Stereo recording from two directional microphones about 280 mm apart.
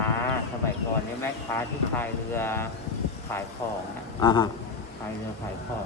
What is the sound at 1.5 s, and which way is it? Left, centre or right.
Speech, centre.